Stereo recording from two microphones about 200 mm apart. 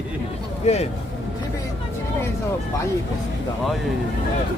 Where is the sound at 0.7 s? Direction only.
35° left (ahead or behind).